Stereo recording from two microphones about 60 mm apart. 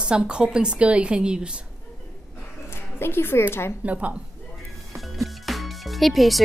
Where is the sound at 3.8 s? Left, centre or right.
Right.